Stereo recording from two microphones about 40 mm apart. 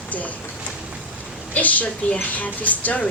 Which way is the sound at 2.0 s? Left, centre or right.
Left.